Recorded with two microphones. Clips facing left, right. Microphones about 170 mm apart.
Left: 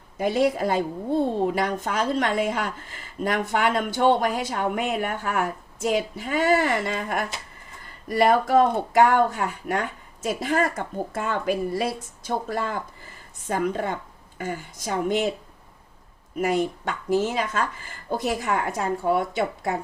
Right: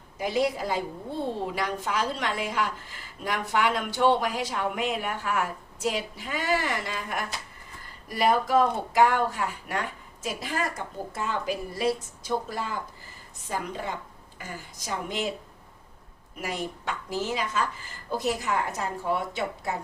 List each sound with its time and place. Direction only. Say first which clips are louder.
0.2 s a woman's voice: left 5 dB; 55° left (ahead or behind)
16.4 s a woman's voice: left 9 dB; 50° left (ahead or behind)